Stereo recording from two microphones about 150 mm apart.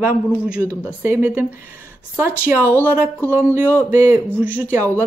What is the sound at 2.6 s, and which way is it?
Speech, 15° left (ahead or behind).